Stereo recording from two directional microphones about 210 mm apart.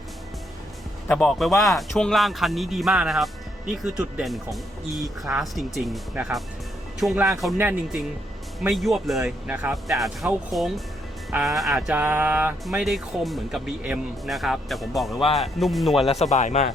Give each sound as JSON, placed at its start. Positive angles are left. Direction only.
{"t": 1.0, "sound": "music", "side_deg": 5}
{"t": 7.0, "sound": "speech", "side_deg": -5}
{"t": 8.6, "sound": "music", "side_deg": 0}
{"t": 16.0, "sound": "speech", "side_deg": 30}